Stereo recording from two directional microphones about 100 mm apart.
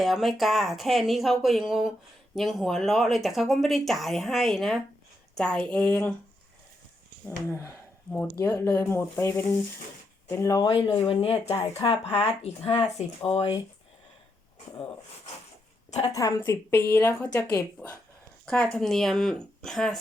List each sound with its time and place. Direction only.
0.0 s speech: centre (ahead or behind)
7.3 s speech: 25° left (ahead or behind)
10.6 s speech: 60° left (ahead or behind)
11.8 s speech: 50° left (ahead or behind)
12.2 s speech: 70° left (ahead or behind)
16.1 s a woman's voice: 40° left (ahead or behind)
16.5 s speech: 25° left (ahead or behind); by 20.0 s 5° left (ahead or behind)